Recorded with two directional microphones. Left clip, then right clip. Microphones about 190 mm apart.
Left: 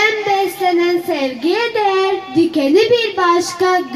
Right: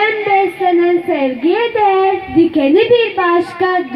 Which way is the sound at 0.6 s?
30° right (ahead or behind).